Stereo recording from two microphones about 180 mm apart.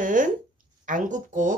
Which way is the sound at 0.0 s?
45° right (ahead or behind).